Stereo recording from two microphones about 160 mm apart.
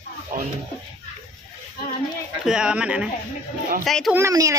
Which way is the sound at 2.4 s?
5° right (ahead or behind).